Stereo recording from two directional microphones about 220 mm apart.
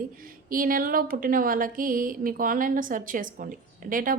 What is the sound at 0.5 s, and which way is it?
A woman's voice, 40° right (ahead or behind).